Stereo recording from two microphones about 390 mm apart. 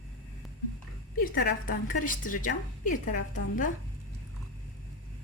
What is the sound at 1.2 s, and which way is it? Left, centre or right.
A woman's voice, left.